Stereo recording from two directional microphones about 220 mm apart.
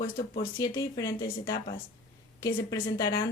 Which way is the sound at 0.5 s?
15° left (ahead or behind).